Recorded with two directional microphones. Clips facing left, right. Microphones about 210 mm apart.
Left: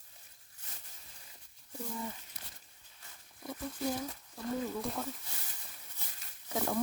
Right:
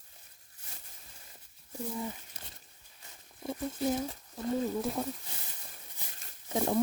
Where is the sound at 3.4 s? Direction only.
25° right (ahead or behind).